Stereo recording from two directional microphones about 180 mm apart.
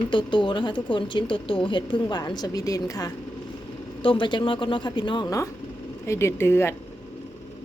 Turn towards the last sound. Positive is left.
turn(degrees=15)  # may be behind; listen again after turning